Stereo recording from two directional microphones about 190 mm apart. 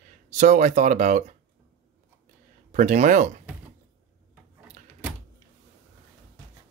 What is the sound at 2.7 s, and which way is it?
Speech, 40° right (ahead or behind).